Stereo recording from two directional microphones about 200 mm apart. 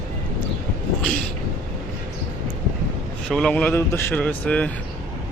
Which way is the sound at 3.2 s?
5° left (ahead or behind).